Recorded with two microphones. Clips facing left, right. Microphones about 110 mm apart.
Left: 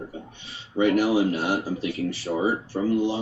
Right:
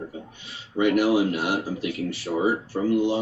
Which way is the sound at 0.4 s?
30° left (ahead or behind).